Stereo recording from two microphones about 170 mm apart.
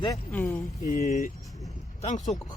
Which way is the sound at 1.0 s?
45° left (ahead or behind).